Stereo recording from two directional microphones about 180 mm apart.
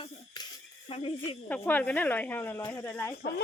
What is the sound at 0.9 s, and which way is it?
Speech, 30° left (ahead or behind).